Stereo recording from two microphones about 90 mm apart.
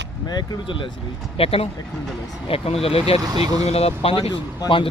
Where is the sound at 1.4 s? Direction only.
90° left.